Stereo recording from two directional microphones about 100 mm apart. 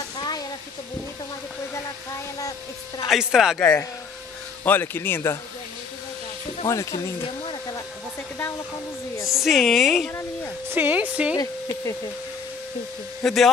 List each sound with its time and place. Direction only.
3.1 s speech: 5° right (ahead or behind)
3.5 s a man's voice: 20° left (ahead or behind)
6.7 s speech: 35° left (ahead or behind)
9.3 s a woman's voice: centre (ahead or behind)
10.7 s speech: 15° right (ahead or behind)
13.2 s speech: centre (ahead or behind)